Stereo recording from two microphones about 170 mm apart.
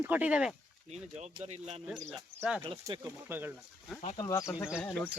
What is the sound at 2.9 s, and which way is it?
Speech, 10° right (ahead or behind).